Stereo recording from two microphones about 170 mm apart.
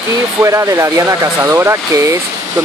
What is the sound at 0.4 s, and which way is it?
Speech, 20° right (ahead or behind).